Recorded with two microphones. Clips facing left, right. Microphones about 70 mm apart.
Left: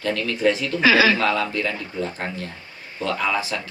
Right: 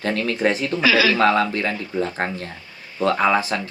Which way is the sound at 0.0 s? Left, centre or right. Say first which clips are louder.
Even; right.